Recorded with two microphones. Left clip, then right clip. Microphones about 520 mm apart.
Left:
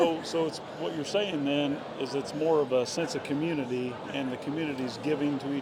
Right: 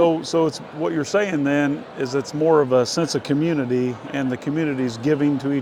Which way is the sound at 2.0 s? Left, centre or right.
Right.